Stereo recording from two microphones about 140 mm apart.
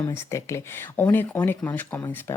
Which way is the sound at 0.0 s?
20° left (ahead or behind).